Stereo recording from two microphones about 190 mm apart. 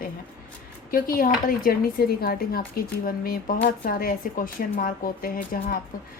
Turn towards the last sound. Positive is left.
turn(degrees=50)  # may be behind; listen again after turning